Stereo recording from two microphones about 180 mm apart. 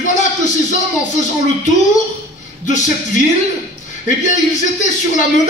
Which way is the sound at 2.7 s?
45° left (ahead or behind).